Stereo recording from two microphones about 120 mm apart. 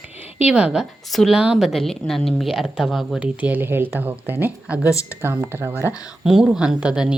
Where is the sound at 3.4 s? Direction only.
15° right (ahead or behind).